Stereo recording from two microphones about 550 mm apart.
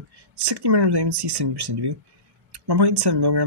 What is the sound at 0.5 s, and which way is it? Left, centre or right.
Speech, right.